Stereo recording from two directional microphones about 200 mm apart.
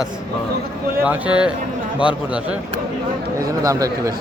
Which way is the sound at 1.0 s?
5° right (ahead or behind).